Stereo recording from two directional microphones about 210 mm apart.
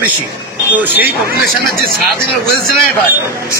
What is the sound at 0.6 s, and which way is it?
Speech, 10° right (ahead or behind).